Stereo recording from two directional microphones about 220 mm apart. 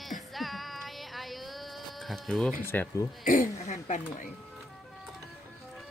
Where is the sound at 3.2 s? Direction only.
35° left (ahead or behind).